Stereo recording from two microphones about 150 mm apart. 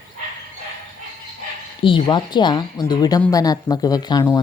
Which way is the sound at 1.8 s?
35° left (ahead or behind).